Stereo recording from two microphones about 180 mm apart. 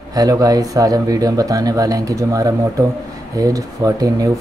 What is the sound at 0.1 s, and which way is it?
Speech, 20° right (ahead or behind).